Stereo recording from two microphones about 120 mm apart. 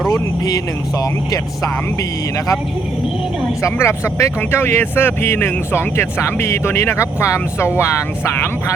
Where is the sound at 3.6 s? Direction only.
20° left (ahead or behind).